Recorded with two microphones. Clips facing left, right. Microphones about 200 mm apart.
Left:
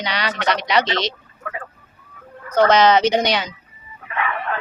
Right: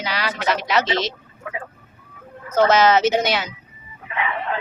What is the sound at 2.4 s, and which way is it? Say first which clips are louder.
Speech: left 1 dB; 5° right (ahead or behind).